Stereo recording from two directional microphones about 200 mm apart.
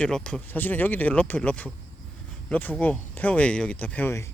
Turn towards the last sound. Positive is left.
turn(degrees=10)  # may be behind; listen again after turning